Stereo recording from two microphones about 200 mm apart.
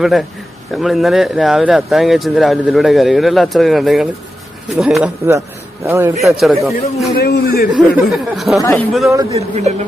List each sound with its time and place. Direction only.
0.0 s speech: centre (ahead or behind)
5.0 s a man's voice: 15° right (ahead or behind)
6.4 s speech: centre (ahead or behind)
7.2 s a man's voice: 50° left (ahead or behind)
8.1 s a man's voice: centre (ahead or behind)
9.3 s speech: 35° right (ahead or behind)